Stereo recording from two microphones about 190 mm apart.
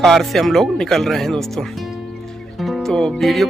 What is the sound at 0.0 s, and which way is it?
Speech, centre (ahead or behind).